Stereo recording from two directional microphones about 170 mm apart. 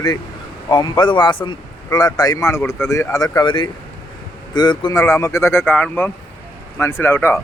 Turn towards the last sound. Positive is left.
turn(degrees=15)  # may be behind; listen again after turning